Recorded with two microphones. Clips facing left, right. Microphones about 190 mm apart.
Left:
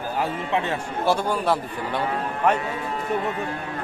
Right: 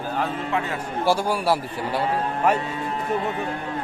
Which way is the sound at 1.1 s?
10° right (ahead or behind).